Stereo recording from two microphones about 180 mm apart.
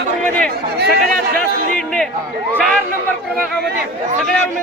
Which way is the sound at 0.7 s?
65° right (ahead or behind).